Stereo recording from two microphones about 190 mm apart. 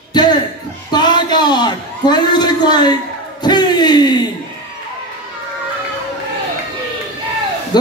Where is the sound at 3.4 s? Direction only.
20° left (ahead or behind).